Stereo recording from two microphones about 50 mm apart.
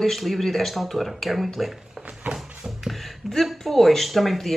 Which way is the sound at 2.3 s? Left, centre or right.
Centre.